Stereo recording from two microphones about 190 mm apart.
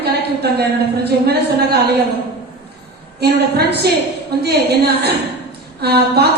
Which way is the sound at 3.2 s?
60° right (ahead or behind).